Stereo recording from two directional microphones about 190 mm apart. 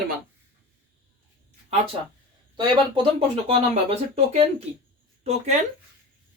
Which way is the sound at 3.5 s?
30° right (ahead or behind).